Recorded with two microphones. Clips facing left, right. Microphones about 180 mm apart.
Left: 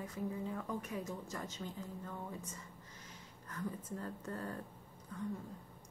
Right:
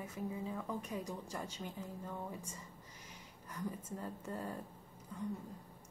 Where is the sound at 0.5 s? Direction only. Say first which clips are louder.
Even; 15° right (ahead or behind).